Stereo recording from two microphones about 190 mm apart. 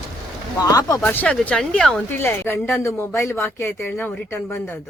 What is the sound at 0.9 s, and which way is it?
Speech, 10° left (ahead or behind).